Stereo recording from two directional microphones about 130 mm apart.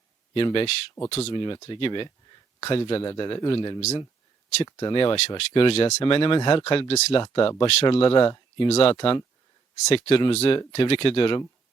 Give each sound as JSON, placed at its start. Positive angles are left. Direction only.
{"t": 0.3, "sound": "speech", "side_deg": 45}
{"t": 1.4, "sound": "speech", "side_deg": 35}
{"t": 3.8, "sound": "speech", "side_deg": 55}
{"t": 4.6, "sound": "speech", "side_deg": 35}
{"t": 5.4, "sound": "speech", "side_deg": 50}